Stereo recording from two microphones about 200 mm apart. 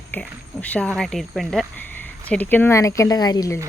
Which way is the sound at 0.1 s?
5° left (ahead or behind).